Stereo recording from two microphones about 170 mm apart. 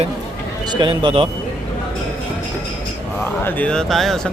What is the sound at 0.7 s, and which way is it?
Speech, 30° right (ahead or behind).